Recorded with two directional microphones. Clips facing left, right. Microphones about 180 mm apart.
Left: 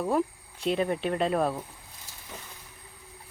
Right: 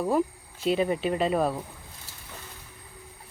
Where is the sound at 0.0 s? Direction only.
Centre (ahead or behind).